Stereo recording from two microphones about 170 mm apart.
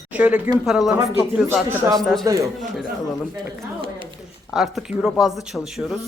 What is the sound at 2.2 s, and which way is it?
Speech, 20° right (ahead or behind).